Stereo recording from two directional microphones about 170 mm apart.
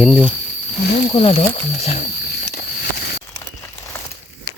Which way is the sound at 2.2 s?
70° left (ahead or behind).